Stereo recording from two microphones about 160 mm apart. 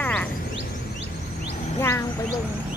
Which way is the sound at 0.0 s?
10° left (ahead or behind).